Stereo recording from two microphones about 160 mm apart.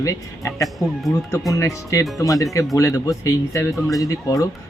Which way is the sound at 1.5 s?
20° left (ahead or behind).